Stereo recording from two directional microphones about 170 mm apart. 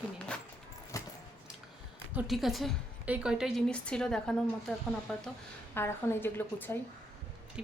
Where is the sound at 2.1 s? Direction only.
Centre (ahead or behind).